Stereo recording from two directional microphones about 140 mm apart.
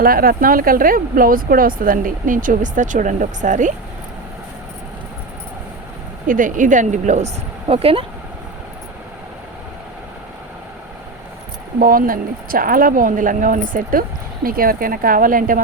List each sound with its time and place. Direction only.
0.0 s speech: 90° right; by 3.7 s 65° right (ahead or behind)
6.2 s a woman's voice: 75° right (ahead or behind)
7.7 s speech: 45° right (ahead or behind)
11.8 s speech: 85° right
14.4 s speech: 90° right